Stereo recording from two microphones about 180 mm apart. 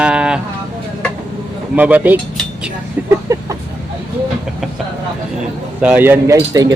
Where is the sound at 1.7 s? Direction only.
10° right (ahead or behind).